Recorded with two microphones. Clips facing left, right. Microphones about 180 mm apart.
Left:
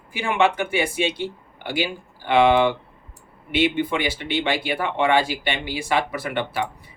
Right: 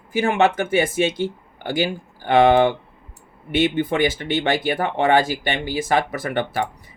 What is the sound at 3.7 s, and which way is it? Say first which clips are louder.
Speech: right 4 dB; 45° right (ahead or behind).